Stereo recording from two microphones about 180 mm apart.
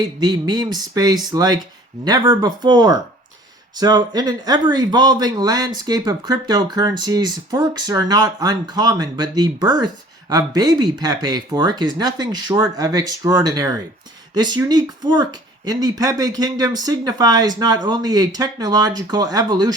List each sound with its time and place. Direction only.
0.2 s speech: 20° right (ahead or behind)